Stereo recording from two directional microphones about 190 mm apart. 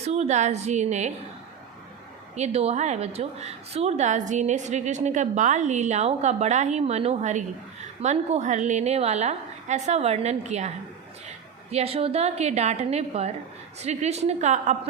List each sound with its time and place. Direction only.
0.0 s a woman's voice: 35° right (ahead or behind)
2.3 s a woman's voice: 35° right (ahead or behind)